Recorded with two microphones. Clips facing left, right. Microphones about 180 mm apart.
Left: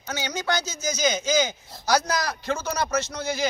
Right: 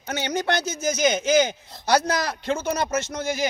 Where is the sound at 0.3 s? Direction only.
55° right (ahead or behind).